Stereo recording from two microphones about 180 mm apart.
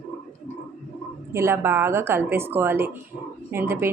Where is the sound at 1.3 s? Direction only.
15° right (ahead or behind).